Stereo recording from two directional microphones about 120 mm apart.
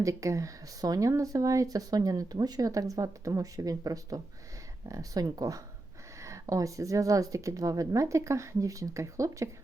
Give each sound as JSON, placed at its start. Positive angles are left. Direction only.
{"t": 0.0, "sound": "speech", "side_deg": -25}